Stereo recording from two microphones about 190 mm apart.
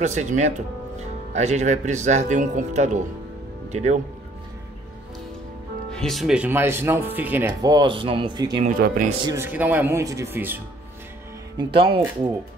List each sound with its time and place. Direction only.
0.0 s speech: 40° right (ahead or behind)
5.9 s speech: 5° left (ahead or behind)
7.7 s speech: 25° right (ahead or behind)
8.8 s speech: 45° right (ahead or behind)
9.2 s speech: 15° right (ahead or behind)
11.5 s speech: 30° right (ahead or behind)